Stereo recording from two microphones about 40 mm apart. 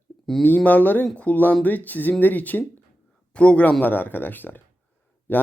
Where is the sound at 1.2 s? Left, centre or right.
Left.